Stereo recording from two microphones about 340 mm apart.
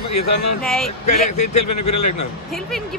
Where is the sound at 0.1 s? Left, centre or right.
Left.